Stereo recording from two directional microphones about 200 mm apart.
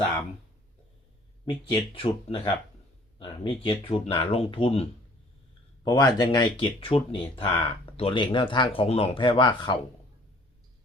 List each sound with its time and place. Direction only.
1.5 s speech: 25° left (ahead or behind)